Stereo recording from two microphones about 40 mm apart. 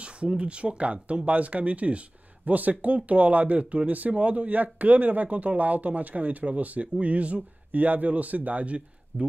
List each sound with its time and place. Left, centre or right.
0.0 s speech: right
7.7 s speech: right